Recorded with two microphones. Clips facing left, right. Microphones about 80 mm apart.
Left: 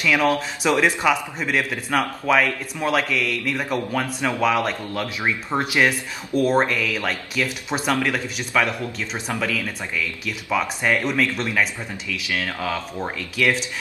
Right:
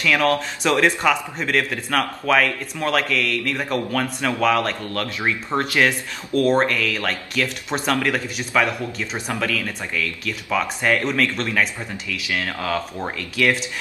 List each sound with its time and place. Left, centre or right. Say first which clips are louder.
0.0 s a man's voice: even; centre
12.3 s speech: right 1 dB; right
12.5 s speech: right 2 dB; centre